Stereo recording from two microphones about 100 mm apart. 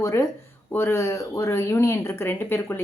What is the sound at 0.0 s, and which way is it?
Speech, 25° left (ahead or behind).